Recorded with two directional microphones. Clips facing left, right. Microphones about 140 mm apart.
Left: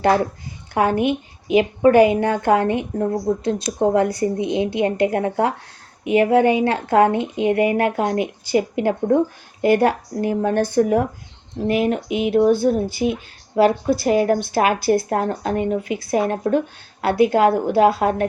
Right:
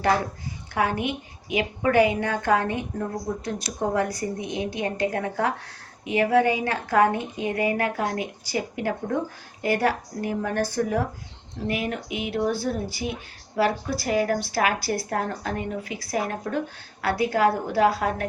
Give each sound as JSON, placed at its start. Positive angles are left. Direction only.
{"t": 0.7, "sound": "a woman's voice", "side_deg": 25}